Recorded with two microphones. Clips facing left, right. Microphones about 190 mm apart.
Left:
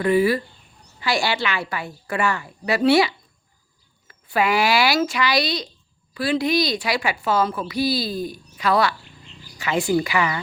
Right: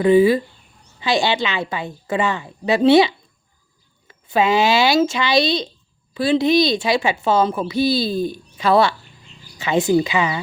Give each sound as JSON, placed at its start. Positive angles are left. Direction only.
{"t": 0.0, "sound": "a woman's voice", "side_deg": -20}